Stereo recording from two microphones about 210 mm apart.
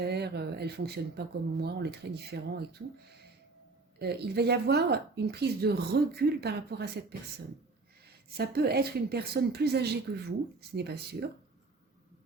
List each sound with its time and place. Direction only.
0.0 s speech: 50° right (ahead or behind)
3.9 s speech: 50° right (ahead or behind)